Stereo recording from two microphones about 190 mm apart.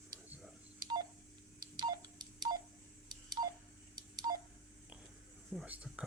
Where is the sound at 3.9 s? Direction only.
20° right (ahead or behind).